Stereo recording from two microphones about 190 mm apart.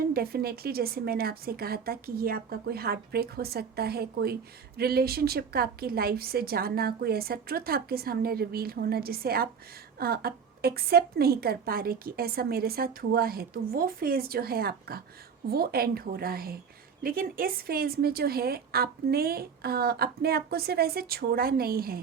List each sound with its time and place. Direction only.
0.1 s a woman's voice: 55° right (ahead or behind)